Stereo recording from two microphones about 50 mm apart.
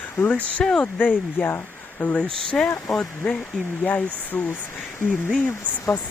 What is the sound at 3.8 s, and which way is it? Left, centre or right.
Speech, left.